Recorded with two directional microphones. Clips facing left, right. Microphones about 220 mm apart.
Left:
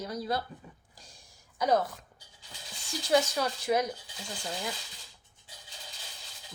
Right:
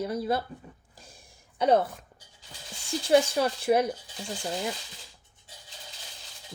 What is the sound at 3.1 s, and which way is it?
Speech, 30° right (ahead or behind).